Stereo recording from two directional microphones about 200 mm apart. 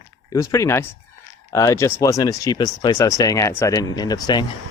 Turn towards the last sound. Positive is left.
turn(degrees=20)  # may be behind; listen again after turning